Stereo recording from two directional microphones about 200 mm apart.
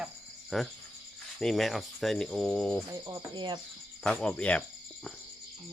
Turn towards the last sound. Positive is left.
turn(degrees=5)  # may be behind; listen again after turning